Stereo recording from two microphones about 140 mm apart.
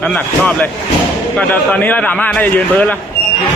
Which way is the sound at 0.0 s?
10° left (ahead or behind).